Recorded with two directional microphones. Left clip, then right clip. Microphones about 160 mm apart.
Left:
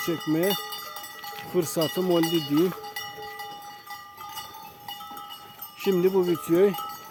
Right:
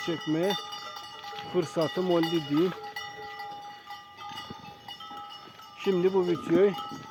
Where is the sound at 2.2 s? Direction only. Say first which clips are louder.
Left 3 dB; 45° right (ahead or behind).